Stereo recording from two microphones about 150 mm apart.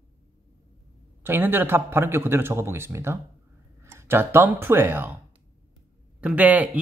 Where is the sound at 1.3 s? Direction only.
15° right (ahead or behind).